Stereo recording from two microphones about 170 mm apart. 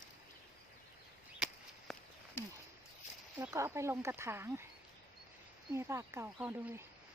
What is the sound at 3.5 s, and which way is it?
Speech, 15° right (ahead or behind).